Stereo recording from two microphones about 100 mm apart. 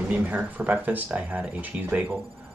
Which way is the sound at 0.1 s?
15° right (ahead or behind).